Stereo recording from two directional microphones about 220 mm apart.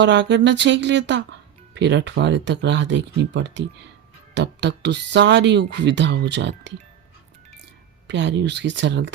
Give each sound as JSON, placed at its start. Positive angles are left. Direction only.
{"t": 0.0, "sound": "speech", "side_deg": -55}
{"t": 8.0, "sound": "speech", "side_deg": -55}